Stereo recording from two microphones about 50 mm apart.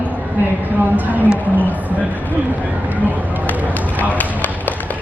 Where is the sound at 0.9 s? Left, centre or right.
Right.